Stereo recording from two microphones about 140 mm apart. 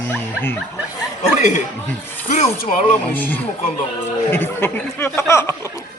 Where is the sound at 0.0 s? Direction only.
15° left (ahead or behind).